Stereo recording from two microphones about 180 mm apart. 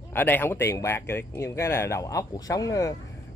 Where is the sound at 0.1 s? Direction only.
10° left (ahead or behind).